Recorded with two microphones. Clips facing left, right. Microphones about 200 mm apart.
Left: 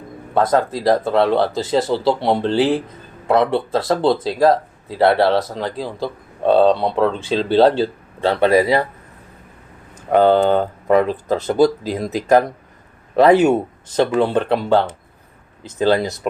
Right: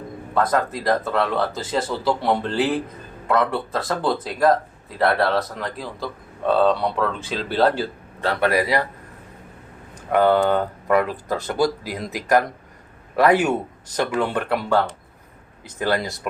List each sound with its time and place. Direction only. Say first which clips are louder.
0.5 s speech: left 5 dB; 30° left (ahead or behind)
10.1 s speech: left 4 dB; 25° left (ahead or behind)